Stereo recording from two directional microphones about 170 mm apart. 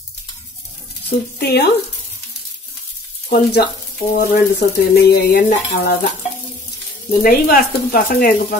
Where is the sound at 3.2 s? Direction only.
60° left (ahead or behind).